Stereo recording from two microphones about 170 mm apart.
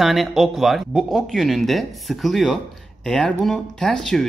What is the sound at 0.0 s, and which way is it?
Speech, centre (ahead or behind).